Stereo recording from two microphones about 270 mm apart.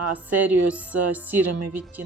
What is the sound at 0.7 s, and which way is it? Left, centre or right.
Speech, centre.